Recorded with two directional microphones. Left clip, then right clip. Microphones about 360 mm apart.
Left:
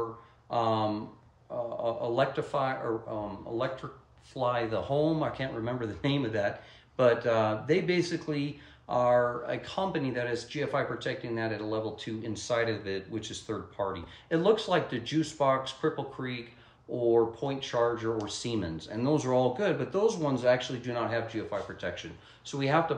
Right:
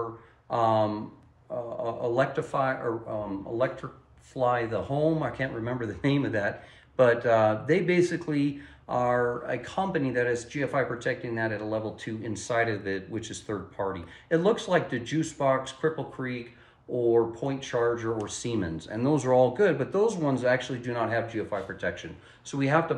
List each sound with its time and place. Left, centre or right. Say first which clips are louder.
0.5 s speech: right 4 dB; centre
4.3 s speech: right 3 dB; centre